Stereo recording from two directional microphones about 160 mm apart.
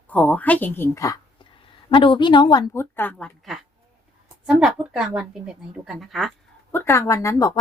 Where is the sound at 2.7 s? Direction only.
15° left (ahead or behind).